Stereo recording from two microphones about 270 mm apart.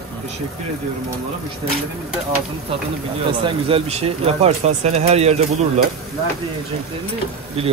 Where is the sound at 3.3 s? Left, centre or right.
Centre.